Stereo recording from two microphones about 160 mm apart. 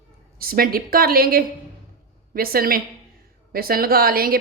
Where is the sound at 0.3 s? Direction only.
70° right (ahead or behind).